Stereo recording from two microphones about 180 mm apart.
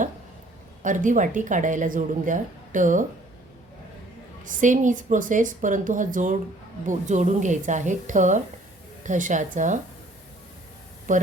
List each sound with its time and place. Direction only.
0.8 s a woman's voice: 45° right (ahead or behind)
4.4 s a woman's voice: 45° right (ahead or behind)